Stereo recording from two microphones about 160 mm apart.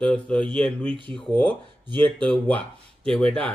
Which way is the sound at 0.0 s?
5° left (ahead or behind).